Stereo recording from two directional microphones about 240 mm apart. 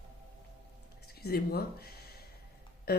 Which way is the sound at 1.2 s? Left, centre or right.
Left.